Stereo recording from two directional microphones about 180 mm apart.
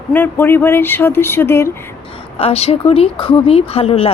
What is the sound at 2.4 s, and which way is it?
Speech, 35° left (ahead or behind).